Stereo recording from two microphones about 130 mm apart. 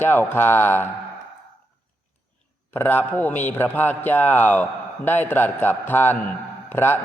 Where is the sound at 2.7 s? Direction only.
15° left (ahead or behind).